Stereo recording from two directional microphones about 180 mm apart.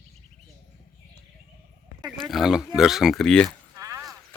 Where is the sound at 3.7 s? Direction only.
20° right (ahead or behind).